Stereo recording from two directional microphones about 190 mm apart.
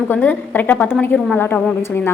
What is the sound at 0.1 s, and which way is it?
A woman's voice, 10° left (ahead or behind).